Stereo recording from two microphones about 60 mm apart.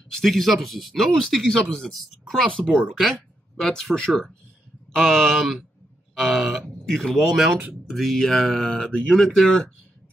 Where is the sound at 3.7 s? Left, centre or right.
Centre.